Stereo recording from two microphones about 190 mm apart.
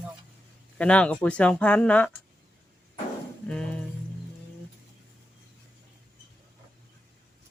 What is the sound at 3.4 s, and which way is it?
Speech, 5° left (ahead or behind).